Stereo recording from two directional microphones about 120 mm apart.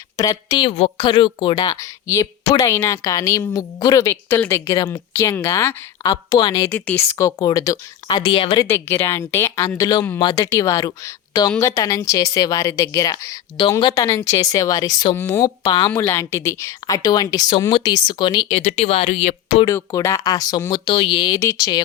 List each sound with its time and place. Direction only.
0.2 s speech: 30° left (ahead or behind)
0.9 s a woman's voice: 40° left (ahead or behind)
1.7 s speech: 25° left (ahead or behind)
6.7 s speech: 15° left (ahead or behind); by 8.5 s 45° left (ahead or behind)
8.6 s speech: 20° left (ahead or behind); by 13.9 s 40° left (ahead or behind)
13.9 s a woman's voice: 25° left (ahead or behind)
16.0 s a woman's voice: 25° left (ahead or behind)
18.5 s speech: 65° left (ahead or behind)
19.6 s a woman's voice: 25° left (ahead or behind); by 21.3 s 40° left (ahead or behind)
21.3 s a woman's voice: 30° left (ahead or behind)